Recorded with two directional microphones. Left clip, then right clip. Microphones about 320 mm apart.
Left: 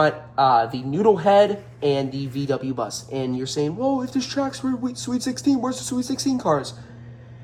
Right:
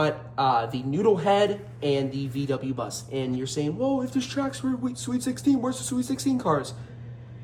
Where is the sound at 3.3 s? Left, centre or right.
Centre.